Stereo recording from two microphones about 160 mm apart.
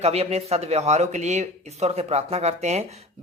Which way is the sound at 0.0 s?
40° right (ahead or behind).